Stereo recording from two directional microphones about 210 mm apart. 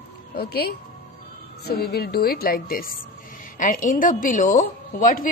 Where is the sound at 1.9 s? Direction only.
50° left (ahead or behind).